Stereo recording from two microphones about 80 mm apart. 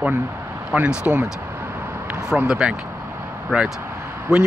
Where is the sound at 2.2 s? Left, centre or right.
Centre.